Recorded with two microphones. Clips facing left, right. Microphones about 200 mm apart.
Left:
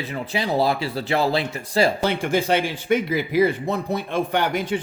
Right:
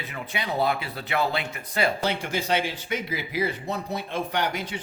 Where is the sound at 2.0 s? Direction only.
55° left (ahead or behind).